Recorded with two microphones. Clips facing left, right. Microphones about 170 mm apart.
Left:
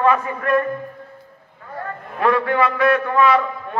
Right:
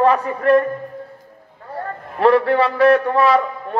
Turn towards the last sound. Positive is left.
turn(degrees=-35)  # may be behind; listen again after turning